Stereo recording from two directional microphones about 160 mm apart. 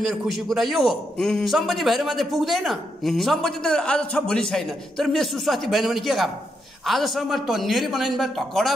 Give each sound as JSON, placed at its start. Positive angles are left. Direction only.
{"t": 0.0, "sound": "a man's voice", "side_deg": 0}